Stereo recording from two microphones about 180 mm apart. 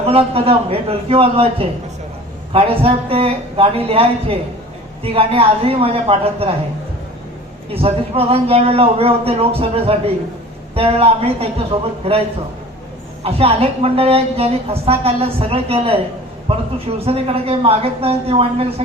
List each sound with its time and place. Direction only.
0.1 s a woman's voice: 30° right (ahead or behind)
7.7 s a woman's voice: 35° right (ahead or behind)
13.2 s a woman's voice: 35° right (ahead or behind)